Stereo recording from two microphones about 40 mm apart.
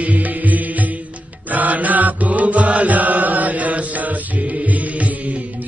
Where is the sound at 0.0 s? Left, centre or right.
Right.